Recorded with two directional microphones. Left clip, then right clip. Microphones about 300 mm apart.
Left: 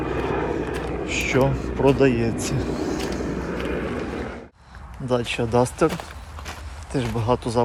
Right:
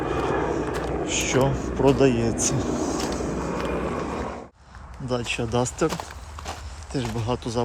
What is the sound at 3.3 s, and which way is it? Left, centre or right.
Skateboard, right.